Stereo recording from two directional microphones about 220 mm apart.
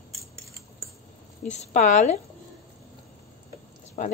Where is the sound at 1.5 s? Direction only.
30° left (ahead or behind).